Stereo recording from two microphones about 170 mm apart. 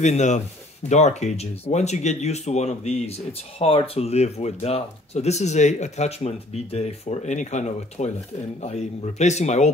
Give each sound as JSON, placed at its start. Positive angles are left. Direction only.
{"t": 0.0, "sound": "speech", "side_deg": 45}